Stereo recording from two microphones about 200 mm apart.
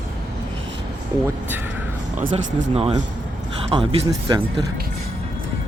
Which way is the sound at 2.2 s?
35° right (ahead or behind).